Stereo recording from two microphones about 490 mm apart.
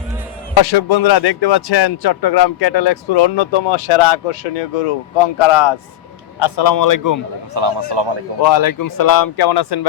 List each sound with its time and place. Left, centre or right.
0.5 s speech: left
5.1 s speech: left
6.4 s a man's voice: left
7.5 s a man's voice: right
8.4 s speech: left